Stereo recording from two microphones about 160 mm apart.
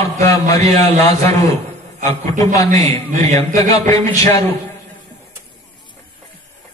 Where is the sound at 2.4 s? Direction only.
20° left (ahead or behind).